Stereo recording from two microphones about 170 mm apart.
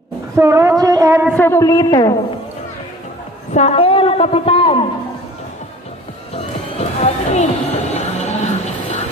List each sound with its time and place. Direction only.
0.4 s a sound: 15° right (ahead or behind)
1.3 s a woman's voice: 15° left (ahead or behind)
3.5 s a woman's voice: 35° left (ahead or behind)
6.3 s music: 40° left (ahead or behind)